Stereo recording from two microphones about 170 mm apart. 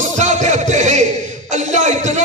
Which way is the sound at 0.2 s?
45° right (ahead or behind).